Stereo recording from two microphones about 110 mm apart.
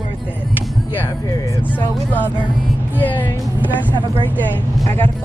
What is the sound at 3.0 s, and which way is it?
Speech, 15° left (ahead or behind).